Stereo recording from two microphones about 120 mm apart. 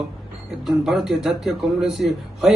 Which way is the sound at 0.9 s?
5° right (ahead or behind).